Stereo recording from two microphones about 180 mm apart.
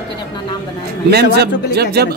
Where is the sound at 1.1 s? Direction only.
65° right (ahead or behind).